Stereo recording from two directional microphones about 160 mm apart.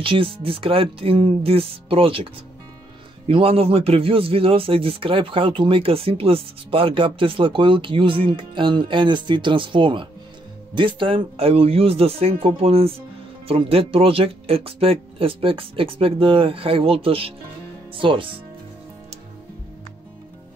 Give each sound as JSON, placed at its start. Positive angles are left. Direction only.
{"t": 0.0, "sound": "a man's voice", "side_deg": -35}
{"t": 3.3, "sound": "a man's voice", "side_deg": -35}